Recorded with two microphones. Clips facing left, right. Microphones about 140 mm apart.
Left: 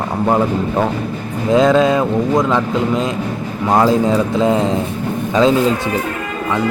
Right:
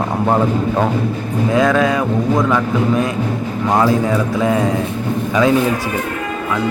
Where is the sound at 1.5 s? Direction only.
20° left (ahead or behind).